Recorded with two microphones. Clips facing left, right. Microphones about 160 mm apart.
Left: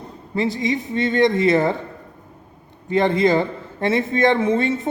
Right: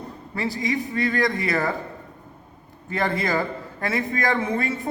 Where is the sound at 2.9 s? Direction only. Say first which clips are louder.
Left 7 dB; 20° left (ahead or behind).